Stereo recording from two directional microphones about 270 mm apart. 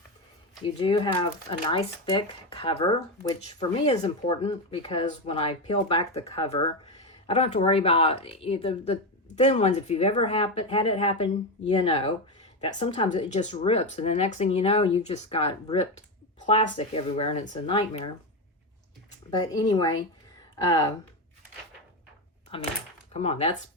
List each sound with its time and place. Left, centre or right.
0.6 s speech: centre
19.3 s speech: centre
22.5 s speech: left